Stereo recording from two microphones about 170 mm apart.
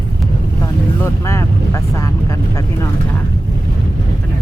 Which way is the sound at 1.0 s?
15° left (ahead or behind).